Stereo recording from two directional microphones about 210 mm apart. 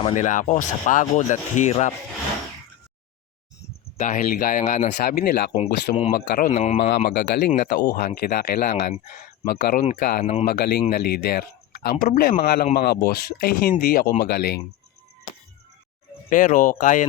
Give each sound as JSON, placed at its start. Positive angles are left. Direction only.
{"t": 0.0, "sound": "speech", "side_deg": 35}
{"t": 3.9, "sound": "speech", "side_deg": 35}
{"t": 6.5, "sound": "speech", "side_deg": 30}
{"t": 6.9, "sound": "speech", "side_deg": 50}
{"t": 16.3, "sound": "speech", "side_deg": 40}